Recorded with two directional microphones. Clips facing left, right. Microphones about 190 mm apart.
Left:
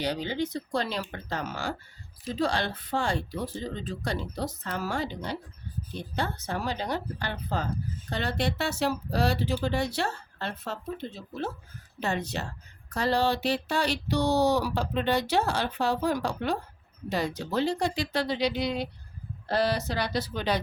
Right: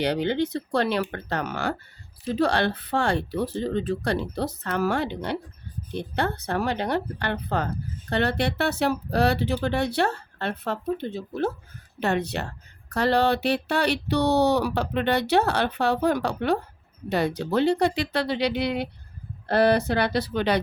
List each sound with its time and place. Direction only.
0.0 s speech: 65° right (ahead or behind)